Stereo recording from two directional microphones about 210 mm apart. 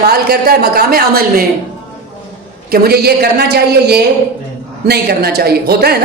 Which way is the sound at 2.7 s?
50° right (ahead or behind).